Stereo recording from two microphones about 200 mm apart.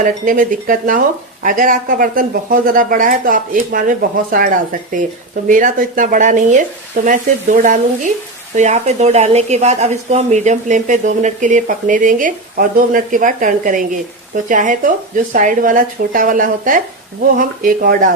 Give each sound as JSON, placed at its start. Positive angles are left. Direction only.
{"t": 0.0, "sound": "speech", "side_deg": -40}
{"t": 5.5, "sound": "speech", "side_deg": -40}